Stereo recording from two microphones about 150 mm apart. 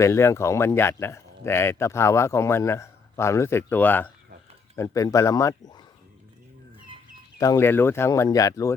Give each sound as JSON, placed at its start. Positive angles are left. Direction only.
{"t": 0.0, "sound": "speech", "side_deg": 15}
{"t": 4.8, "sound": "speech", "side_deg": 20}
{"t": 7.3, "sound": "speech", "side_deg": 20}